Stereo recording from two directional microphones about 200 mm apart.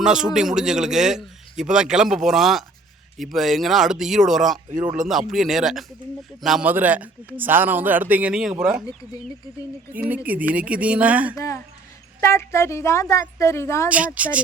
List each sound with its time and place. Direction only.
0.0 s a man's voice: 5° right (ahead or behind)
9.9 s a man's voice: 10° right (ahead or behind)
11.3 s a woman's voice: 15° left (ahead or behind)
13.8 s a man's voice: 5° right (ahead or behind)